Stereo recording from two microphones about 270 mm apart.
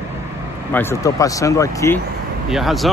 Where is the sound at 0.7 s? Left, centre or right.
Centre.